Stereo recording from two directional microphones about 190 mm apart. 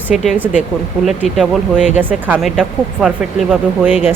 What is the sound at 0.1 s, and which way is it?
Speech, centre (ahead or behind).